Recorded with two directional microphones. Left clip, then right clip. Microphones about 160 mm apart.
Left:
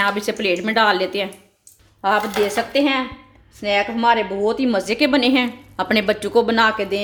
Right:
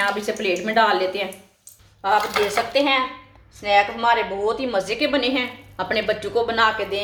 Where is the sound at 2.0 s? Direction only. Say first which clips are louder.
Left 1 dB; 85° left.